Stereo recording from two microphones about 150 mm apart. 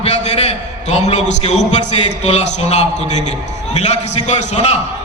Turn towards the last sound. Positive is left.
turn(degrees=50)  # may be behind; listen again after turning